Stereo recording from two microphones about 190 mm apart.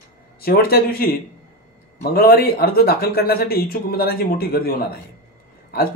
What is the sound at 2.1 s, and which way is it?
A man's voice, 55° left (ahead or behind).